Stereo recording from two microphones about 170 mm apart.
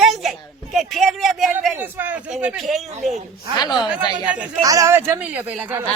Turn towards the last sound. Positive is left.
turn(degrees=-10)  # may be behind; listen again after turning